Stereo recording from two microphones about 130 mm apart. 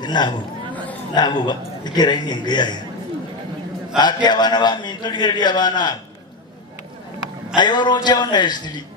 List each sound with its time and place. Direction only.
0.0 s a man's voice: 35° left (ahead or behind)
4.0 s a man's voice: 35° left (ahead or behind)
7.5 s a man's voice: 35° left (ahead or behind)